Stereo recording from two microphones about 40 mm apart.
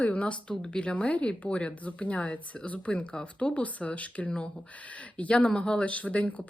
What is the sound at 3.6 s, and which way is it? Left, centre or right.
Speech, left.